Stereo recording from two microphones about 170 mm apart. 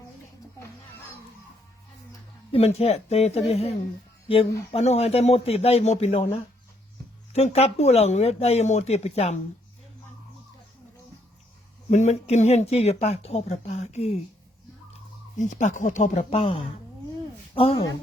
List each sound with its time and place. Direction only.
2.5 s speech: 35° left (ahead or behind)
7.3 s speech: 40° left (ahead or behind)
11.9 s speech: 40° left (ahead or behind)
15.4 s a woman's voice: 45° left (ahead or behind)